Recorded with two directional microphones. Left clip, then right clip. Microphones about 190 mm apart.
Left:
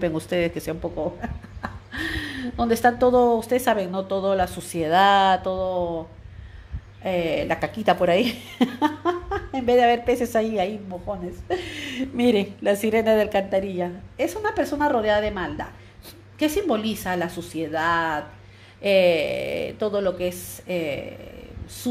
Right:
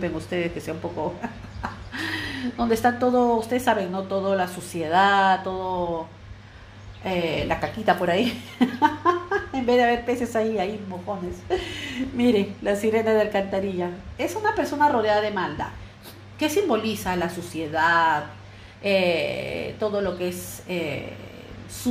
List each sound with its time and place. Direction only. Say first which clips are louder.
0.0 s speech: left 4 dB; 50° left (ahead or behind)
7.0 s speech: left 2 dB; 45° left (ahead or behind)